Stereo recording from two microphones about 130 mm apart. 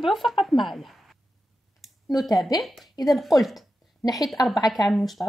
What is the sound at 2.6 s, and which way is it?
A woman's voice, centre (ahead or behind).